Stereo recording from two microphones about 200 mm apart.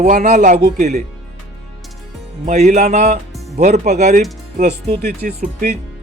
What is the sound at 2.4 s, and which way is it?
Speech, 35° right (ahead or behind).